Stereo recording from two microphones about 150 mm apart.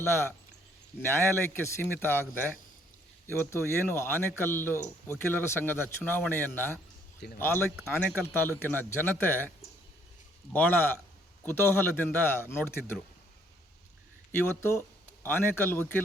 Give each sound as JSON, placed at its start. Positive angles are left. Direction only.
{"t": 0.0, "sound": "speech", "side_deg": 15}
{"t": 10.5, "sound": "speech", "side_deg": 15}
{"t": 14.6, "sound": "speech", "side_deg": 15}